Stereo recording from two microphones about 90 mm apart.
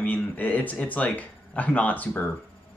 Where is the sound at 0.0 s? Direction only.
20° left (ahead or behind).